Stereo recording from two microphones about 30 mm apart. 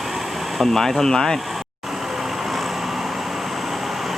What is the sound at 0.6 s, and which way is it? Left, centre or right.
Speech, centre.